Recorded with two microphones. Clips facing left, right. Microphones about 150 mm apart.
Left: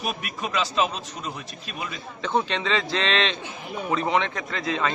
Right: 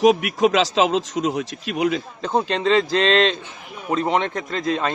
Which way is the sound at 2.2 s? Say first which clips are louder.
Left 1 dB; 35° right (ahead or behind).